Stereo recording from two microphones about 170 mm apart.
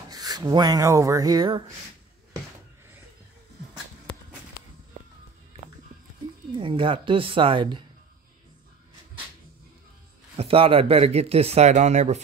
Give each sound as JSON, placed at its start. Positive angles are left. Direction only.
{"t": 0.1, "sound": "speech", "side_deg": -20}
{"t": 6.5, "sound": "speech", "side_deg": -30}
{"t": 10.3, "sound": "speech", "side_deg": -35}